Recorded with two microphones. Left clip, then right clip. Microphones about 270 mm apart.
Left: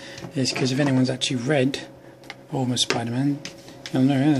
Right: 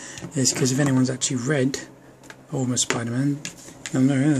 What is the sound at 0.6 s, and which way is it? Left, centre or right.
Speech, centre.